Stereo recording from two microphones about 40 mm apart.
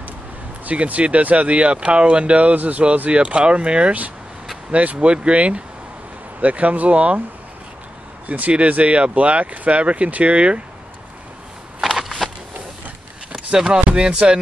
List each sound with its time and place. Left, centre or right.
0.7 s speech: right
3.1 s speech: right
8.3 s speech: right
11.8 s a sound: centre
13.7 s speech: right